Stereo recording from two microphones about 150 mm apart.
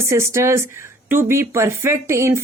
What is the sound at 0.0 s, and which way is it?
A woman's voice, 20° right (ahead or behind).